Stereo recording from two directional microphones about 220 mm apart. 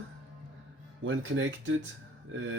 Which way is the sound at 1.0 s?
60° right (ahead or behind).